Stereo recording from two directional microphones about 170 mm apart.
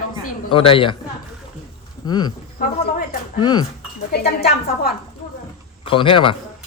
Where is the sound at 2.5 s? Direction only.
60° left (ahead or behind).